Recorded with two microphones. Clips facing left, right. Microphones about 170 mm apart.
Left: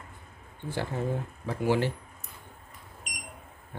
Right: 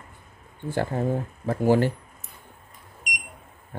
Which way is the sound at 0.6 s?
50° right (ahead or behind).